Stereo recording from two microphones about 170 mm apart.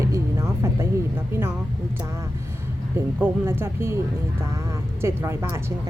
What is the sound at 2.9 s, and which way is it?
Speech, 15° right (ahead or behind).